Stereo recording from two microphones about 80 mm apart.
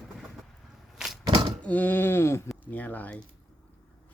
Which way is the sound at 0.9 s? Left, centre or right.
Centre.